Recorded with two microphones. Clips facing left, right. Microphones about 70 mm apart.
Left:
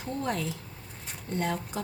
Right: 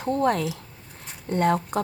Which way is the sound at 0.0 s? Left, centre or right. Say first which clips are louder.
Right 9 dB; right.